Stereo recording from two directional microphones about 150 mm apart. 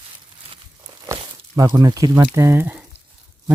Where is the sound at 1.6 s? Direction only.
25° right (ahead or behind).